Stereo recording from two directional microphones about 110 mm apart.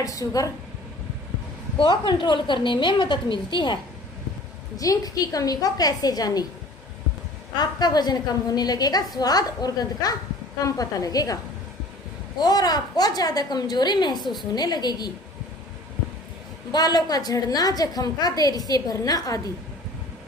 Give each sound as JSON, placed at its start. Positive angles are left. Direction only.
{"t": 0.0, "sound": "a woman's voice", "side_deg": 30}
{"t": 1.8, "sound": "a woman's voice", "side_deg": 50}
{"t": 4.7, "sound": "a woman's voice", "side_deg": 35}
{"t": 7.5, "sound": "a woman's voice", "side_deg": 40}
{"t": 12.4, "sound": "a woman's voice", "side_deg": 35}
{"t": 16.7, "sound": "a woman's voice", "side_deg": 35}